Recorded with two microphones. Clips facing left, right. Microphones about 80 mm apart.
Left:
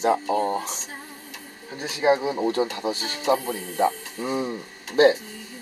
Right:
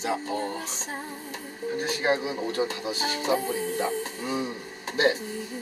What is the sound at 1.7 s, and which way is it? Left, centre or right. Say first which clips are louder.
Speech: left 5 dB; centre.